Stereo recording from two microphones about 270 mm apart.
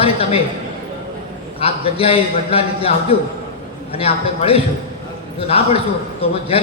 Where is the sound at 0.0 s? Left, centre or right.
Left.